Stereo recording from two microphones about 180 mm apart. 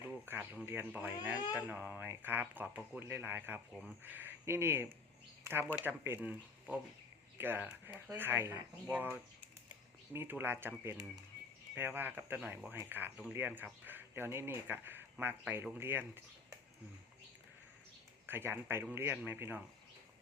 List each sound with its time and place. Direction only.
0.3 s speech: 10° right (ahead or behind)
5.4 s a sound: 10° right (ahead or behind)
5.8 s speech: 10° right (ahead or behind)
18.3 s speech: 10° right (ahead or behind)